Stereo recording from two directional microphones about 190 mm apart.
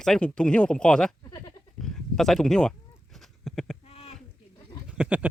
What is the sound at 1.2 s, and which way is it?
Bleat, 20° left (ahead or behind).